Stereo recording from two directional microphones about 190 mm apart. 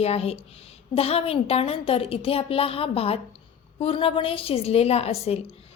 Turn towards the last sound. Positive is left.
turn(degrees=30)  # may be behind; listen again after turning